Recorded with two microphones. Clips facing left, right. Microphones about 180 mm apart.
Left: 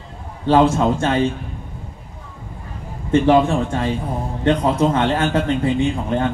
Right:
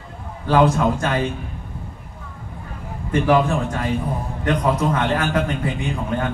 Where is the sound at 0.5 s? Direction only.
25° left (ahead or behind).